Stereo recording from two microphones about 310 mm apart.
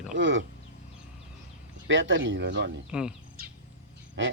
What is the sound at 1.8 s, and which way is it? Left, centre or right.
Speech, right.